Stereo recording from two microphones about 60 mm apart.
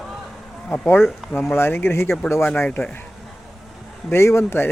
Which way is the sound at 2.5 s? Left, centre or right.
Left.